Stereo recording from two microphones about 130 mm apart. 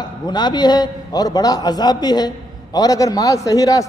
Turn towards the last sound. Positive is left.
turn(degrees=25)  # may be behind; listen again after turning